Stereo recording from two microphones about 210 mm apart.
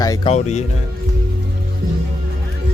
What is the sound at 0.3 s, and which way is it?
Speech, 35° left (ahead or behind).